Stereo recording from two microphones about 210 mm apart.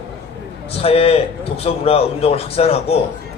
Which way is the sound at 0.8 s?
30° left (ahead or behind).